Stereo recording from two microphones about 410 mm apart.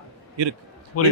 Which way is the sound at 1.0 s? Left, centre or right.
Left.